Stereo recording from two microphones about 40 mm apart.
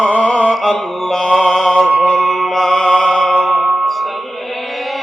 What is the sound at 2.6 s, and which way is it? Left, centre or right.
Music, left.